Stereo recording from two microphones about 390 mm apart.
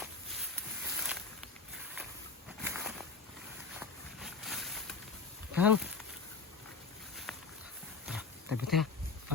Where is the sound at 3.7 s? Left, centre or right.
Centre.